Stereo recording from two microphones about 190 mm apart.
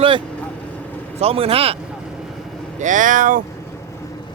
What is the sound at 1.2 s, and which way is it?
Speech, 30° right (ahead or behind).